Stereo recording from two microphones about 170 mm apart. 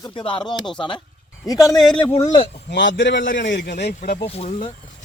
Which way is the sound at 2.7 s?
90° left.